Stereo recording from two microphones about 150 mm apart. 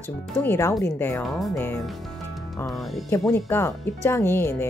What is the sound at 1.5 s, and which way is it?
Speech, 15° left (ahead or behind).